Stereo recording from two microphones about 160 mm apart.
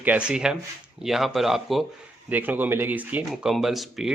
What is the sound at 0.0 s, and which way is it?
Speech, 10° right (ahead or behind).